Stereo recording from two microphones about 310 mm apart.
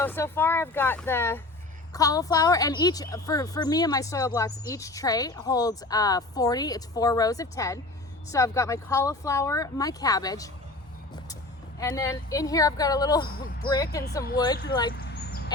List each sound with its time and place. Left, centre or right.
0.0 s speech: centre
11.8 s speech: centre
15.1 s a sound: left